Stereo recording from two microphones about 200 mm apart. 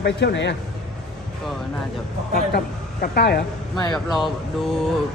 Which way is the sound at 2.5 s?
55° left (ahead or behind).